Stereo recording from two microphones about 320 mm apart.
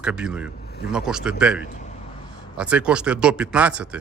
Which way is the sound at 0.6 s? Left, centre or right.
Left.